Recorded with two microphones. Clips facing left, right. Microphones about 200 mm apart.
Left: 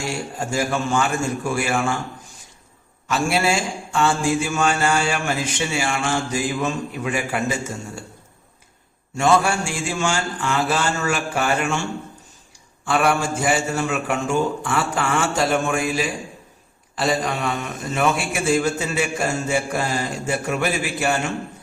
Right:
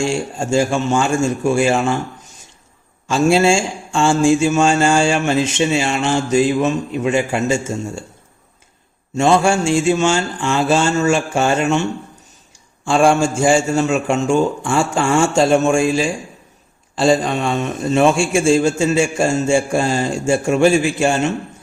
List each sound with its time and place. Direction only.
0.0 s mantra: 25° right (ahead or behind)
3.1 s mantra: 25° right (ahead or behind)
9.1 s mantra: 25° right (ahead or behind)